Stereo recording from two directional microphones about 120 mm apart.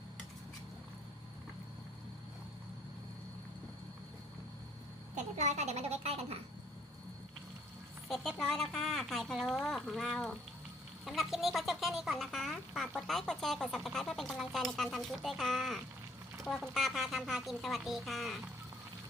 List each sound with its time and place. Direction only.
5.1 s a woman's voice: 75° right (ahead or behind)
8.0 s speech: centre (ahead or behind)